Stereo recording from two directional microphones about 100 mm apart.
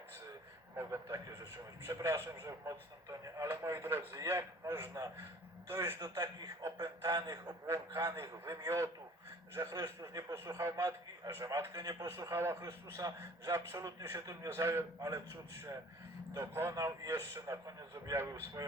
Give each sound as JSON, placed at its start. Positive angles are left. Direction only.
{"t": 0.8, "sound": "a man's voice", "side_deg": -30}
{"t": 6.1, "sound": "a man's voice", "side_deg": -40}
{"t": 11.7, "sound": "a man's voice", "side_deg": -40}